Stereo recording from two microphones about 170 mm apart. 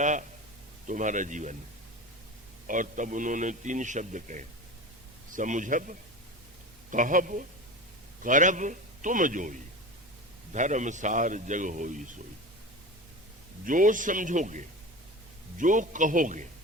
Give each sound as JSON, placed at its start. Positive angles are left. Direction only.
{"t": 0.0, "sound": "a man's voice", "side_deg": -45}
{"t": 2.6, "sound": "a man's voice", "side_deg": -50}
{"t": 13.7, "sound": "a man's voice", "side_deg": -50}